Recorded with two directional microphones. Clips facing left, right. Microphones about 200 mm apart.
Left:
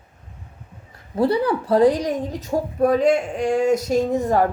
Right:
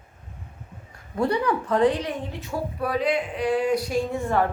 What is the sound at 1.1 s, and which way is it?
Speech, 30° left (ahead or behind).